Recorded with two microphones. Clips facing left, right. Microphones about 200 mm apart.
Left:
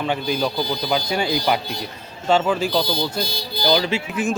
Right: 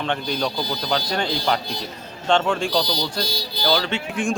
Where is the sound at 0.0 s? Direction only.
5° left (ahead or behind).